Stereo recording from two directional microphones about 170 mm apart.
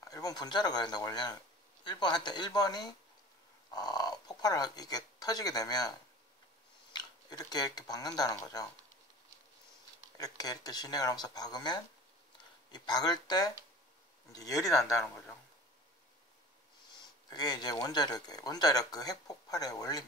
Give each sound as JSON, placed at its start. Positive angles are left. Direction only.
{"t": 0.0, "sound": "speech", "side_deg": 20}
{"t": 10.1, "sound": "speech", "side_deg": 20}
{"t": 16.9, "sound": "speech", "side_deg": 25}